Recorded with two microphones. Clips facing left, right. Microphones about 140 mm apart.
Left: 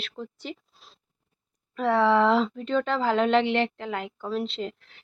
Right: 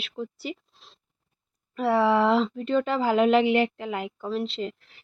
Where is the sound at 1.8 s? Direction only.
5° right (ahead or behind).